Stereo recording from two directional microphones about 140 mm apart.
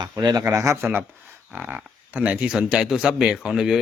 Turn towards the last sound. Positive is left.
turn(degrees=0)  # may be behind; listen again after turning